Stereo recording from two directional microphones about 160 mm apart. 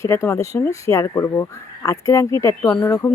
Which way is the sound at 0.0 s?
20° left (ahead or behind).